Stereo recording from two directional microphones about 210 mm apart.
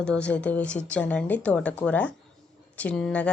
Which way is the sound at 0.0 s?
5° left (ahead or behind).